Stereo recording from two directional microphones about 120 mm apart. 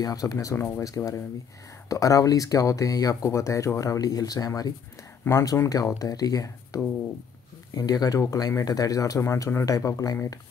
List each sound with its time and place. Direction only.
0.0 s speech: 30° left (ahead or behind)